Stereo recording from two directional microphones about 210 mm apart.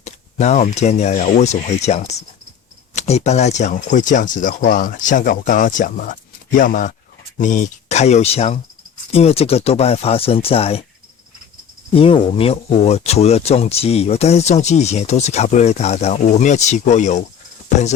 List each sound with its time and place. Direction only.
0.0 s speech: 35° left (ahead or behind)
11.9 s speech: 25° left (ahead or behind)